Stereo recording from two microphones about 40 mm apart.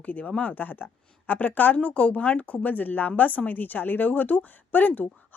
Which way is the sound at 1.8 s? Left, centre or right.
Left.